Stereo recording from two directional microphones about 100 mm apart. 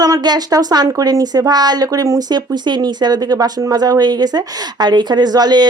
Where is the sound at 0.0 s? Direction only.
40° right (ahead or behind).